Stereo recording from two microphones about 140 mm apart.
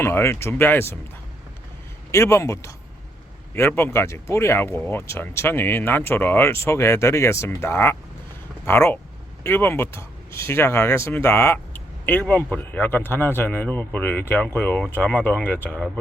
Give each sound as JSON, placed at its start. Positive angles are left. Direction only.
{"t": 0.0, "sound": "speech", "side_deg": 15}
{"t": 2.1, "sound": "a man's voice", "side_deg": 20}